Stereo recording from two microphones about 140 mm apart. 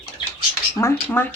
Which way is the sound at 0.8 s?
15° left (ahead or behind).